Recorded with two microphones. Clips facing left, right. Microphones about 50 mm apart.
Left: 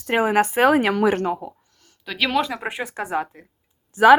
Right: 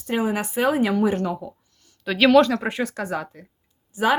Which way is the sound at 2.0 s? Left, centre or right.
Centre.